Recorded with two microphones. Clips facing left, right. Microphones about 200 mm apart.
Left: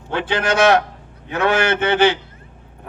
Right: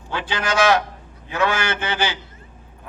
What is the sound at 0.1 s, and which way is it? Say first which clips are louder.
A man's voice: left 5 dB; 60° left (ahead or behind).